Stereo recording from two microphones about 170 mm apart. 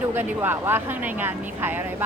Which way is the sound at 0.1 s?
10° right (ahead or behind).